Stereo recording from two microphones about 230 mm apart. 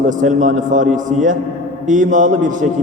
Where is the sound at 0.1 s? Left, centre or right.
Right.